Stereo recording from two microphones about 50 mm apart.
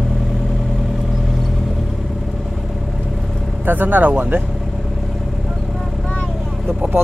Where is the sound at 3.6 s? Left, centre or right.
Right.